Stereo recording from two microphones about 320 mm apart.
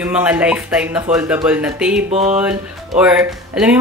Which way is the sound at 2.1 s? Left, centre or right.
Centre.